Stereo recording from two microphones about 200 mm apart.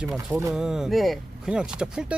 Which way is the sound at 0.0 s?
5° right (ahead or behind).